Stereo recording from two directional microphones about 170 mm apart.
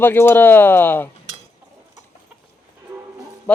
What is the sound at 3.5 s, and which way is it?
Speech, 10° left (ahead or behind).